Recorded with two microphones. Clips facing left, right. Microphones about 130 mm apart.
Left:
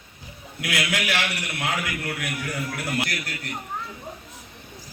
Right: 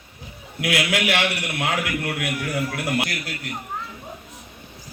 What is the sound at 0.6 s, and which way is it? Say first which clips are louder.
A man's voice: right 5 dB; 25° right (ahead or behind).